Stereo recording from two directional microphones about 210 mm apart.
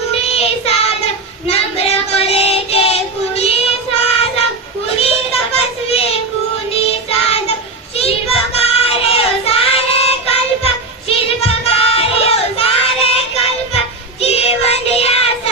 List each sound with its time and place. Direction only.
0.1 s child singing: 30° left (ahead or behind)
5.6 s a sound: 30° left (ahead or behind)
7.2 s child singing: 30° left (ahead or behind)
8.5 s child singing: 30° left (ahead or behind)